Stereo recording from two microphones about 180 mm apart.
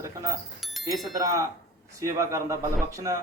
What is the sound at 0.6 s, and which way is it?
Bicycle bell, centre (ahead or behind).